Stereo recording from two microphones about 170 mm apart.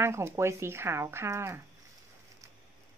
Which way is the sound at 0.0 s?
15° right (ahead or behind).